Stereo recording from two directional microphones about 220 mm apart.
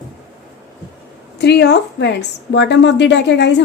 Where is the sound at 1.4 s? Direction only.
50° left (ahead or behind).